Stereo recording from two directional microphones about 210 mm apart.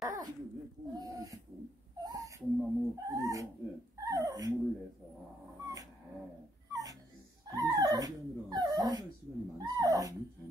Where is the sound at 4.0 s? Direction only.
15° right (ahead or behind).